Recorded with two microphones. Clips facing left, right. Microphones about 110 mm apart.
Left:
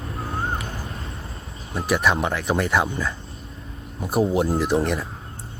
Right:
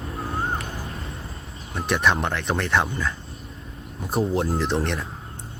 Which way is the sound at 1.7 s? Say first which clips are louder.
Left 1 dB; 5° left (ahead or behind).